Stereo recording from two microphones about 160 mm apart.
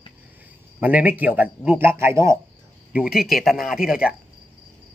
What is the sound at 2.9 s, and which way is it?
Speech, 5° right (ahead or behind).